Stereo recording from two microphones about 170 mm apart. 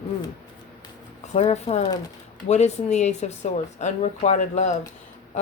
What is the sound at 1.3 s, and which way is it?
A woman's voice, 40° left (ahead or behind).